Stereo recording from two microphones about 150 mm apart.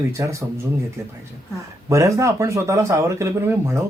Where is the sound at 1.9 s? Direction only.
20° right (ahead or behind).